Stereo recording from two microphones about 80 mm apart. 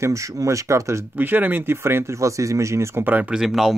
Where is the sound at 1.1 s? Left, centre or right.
Right.